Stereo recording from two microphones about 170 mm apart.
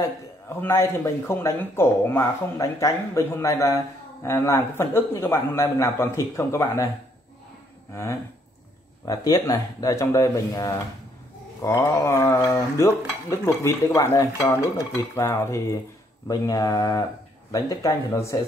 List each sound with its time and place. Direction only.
0.0 s speech: 15° left (ahead or behind)
7.9 s speech: 15° left (ahead or behind)